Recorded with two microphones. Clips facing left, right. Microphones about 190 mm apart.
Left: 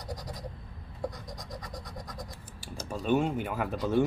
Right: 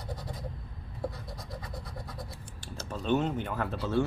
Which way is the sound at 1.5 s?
5° right (ahead or behind).